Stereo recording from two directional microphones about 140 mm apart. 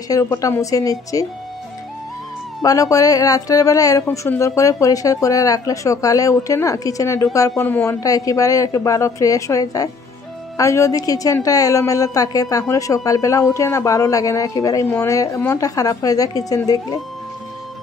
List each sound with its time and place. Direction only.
0.1 s speech: 20° left (ahead or behind)
2.6 s speech: 25° left (ahead or behind)